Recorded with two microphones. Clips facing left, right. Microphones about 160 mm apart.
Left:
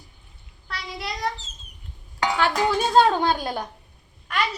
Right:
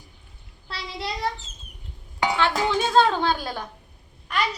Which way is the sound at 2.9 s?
10° left (ahead or behind).